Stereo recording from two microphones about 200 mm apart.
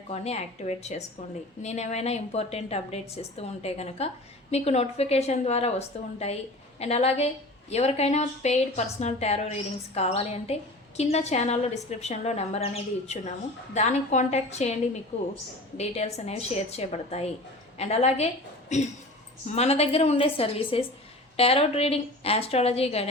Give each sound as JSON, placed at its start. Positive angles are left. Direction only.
{"t": 0.1, "sound": "a woman's voice", "side_deg": 35}
{"t": 6.7, "sound": "a woman's voice", "side_deg": 30}